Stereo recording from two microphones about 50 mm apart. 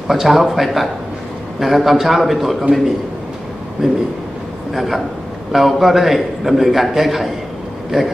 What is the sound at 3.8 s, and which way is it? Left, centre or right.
A man's voice, centre.